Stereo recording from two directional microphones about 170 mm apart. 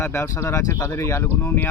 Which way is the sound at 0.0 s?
15° left (ahead or behind).